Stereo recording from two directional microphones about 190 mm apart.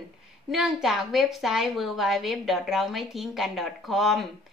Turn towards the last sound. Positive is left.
turn(degrees=0)  # may be behind; listen again after turning